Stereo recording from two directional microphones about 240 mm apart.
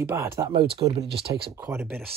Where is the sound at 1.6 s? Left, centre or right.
Centre.